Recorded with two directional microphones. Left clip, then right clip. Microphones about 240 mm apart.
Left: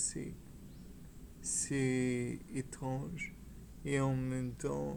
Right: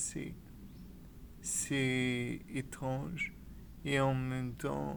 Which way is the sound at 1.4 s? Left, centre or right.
Right.